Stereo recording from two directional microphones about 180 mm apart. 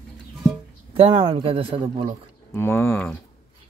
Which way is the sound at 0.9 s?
30° right (ahead or behind).